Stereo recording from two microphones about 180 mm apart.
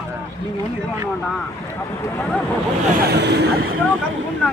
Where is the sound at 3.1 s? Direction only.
65° right (ahead or behind).